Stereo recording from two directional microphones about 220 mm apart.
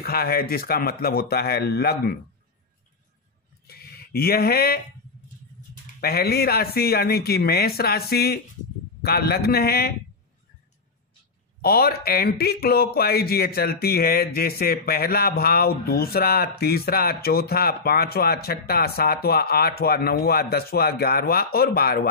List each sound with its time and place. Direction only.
0.0 s speech: 45° left (ahead or behind)
3.6 s speech: 45° left (ahead or behind)
5.9 s speech: 45° left (ahead or behind)
11.6 s speech: 45° left (ahead or behind)